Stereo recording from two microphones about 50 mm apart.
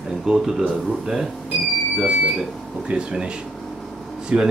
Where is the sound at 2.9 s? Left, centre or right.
Right.